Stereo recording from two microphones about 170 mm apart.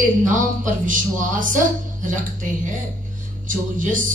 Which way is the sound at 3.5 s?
50° right (ahead or behind).